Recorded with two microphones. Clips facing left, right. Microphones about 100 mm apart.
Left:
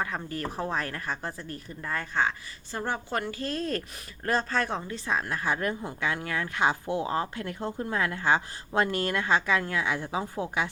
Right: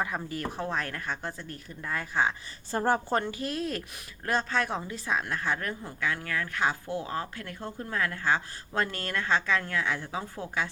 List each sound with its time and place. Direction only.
0.0 s speech: 5° right (ahead or behind)
2.7 s a woman's voice: 40° right (ahead or behind)
3.3 s a woman's voice: 10° right (ahead or behind); by 10.7 s 15° left (ahead or behind)